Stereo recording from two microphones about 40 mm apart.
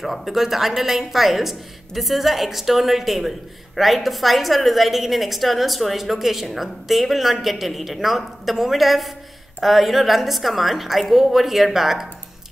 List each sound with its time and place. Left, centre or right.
0.0 s a woman's voice: centre